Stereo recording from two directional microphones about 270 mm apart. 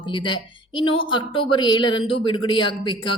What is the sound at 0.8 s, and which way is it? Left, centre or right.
Speech, centre.